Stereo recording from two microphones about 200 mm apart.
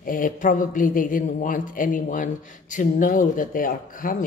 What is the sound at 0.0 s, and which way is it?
Speech, 45° left (ahead or behind).